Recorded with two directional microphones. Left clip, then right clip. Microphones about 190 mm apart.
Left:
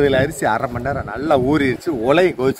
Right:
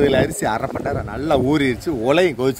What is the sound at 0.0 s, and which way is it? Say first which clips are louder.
A man's voice: left 1 dB; 5° right (ahead or behind).